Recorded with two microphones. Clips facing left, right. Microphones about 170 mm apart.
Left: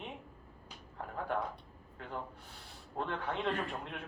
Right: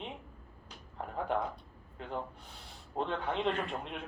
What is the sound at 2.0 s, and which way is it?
Speech, 20° right (ahead or behind).